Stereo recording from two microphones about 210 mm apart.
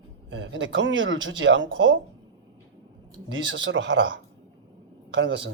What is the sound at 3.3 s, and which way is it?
Speech, 65° right (ahead or behind).